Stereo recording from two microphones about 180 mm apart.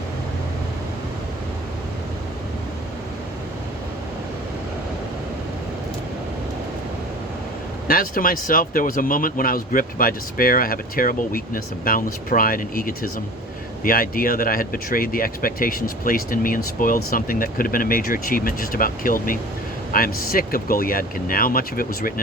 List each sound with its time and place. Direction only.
7.9 s speech: 50° left (ahead or behind)